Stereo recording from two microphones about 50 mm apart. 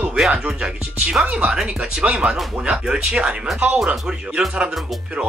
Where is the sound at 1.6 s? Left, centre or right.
Centre.